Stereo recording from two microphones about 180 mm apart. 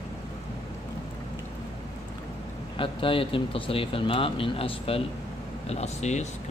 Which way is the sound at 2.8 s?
30° left (ahead or behind).